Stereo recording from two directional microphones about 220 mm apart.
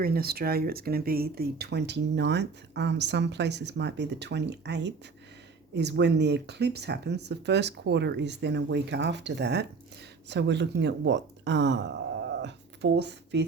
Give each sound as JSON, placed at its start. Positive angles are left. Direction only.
{"t": 0.0, "sound": "speech", "side_deg": -45}